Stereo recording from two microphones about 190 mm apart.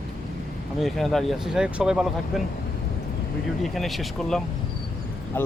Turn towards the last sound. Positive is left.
turn(degrees=10)  # may be behind; listen again after turning